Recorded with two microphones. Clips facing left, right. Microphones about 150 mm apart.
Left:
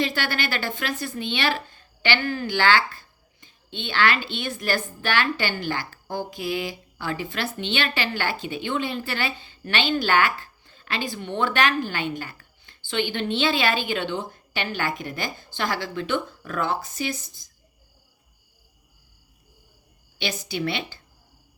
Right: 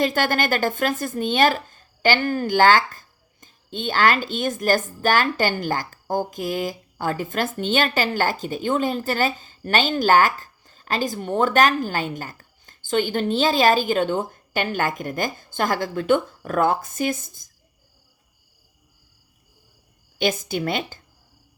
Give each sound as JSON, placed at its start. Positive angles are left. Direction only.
{"t": 0.0, "sound": "speech", "side_deg": -45}
{"t": 20.1, "sound": "speech", "side_deg": -45}